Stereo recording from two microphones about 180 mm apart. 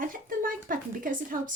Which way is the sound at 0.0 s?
50° right (ahead or behind).